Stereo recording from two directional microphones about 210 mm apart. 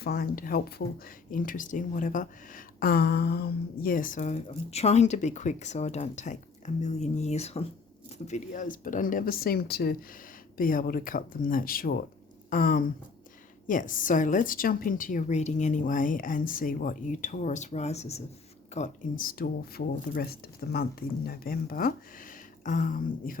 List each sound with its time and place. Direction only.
0.0 s speech: 45° left (ahead or behind)